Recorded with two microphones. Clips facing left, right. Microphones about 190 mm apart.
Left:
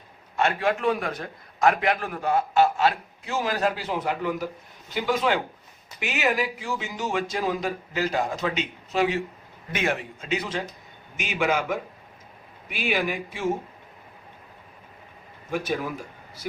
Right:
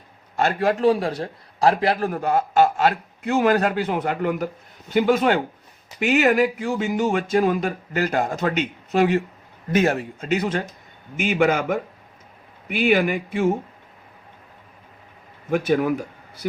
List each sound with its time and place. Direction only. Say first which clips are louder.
0.3 s a man's voice: right 3 dB; 40° right (ahead or behind)
9.7 s speech: right 7 dB; 40° right (ahead or behind)
15.4 s speech: right 8 dB; 55° right (ahead or behind)